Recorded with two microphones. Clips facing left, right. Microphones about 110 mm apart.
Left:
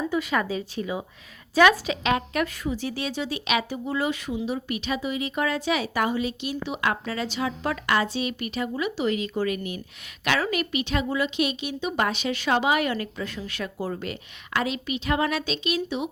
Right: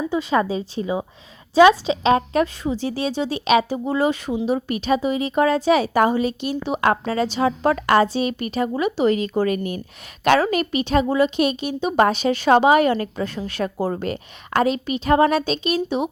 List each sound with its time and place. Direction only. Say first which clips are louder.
0.1 s a woman's voice: right 5 dB; 30° right (ahead or behind)